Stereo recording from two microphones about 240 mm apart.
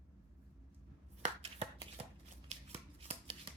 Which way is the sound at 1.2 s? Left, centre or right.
Right.